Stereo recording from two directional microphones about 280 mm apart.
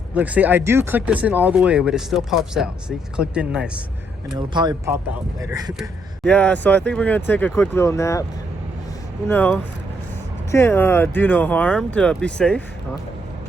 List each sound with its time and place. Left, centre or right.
0.1 s speech: centre
4.4 s speech: centre
6.2 s speech: centre
9.3 s speech: centre